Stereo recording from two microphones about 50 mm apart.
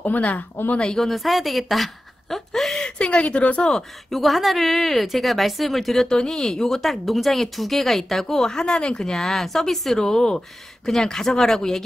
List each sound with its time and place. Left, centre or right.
0.0 s a woman's voice: left
0.7 s speech: centre
1.0 s speech: centre
2.8 s a woman's voice: centre
4.1 s a woman's voice: centre